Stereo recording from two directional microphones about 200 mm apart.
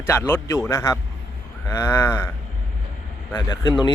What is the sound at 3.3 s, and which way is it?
Speech, 20° left (ahead or behind).